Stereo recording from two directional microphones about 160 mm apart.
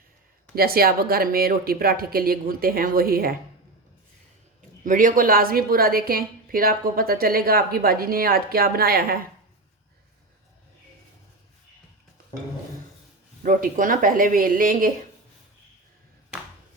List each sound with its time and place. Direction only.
0.5 s a woman's voice: 70° right (ahead or behind)
4.8 s a woman's voice: 55° right (ahead or behind)
13.4 s speech: 60° right (ahead or behind)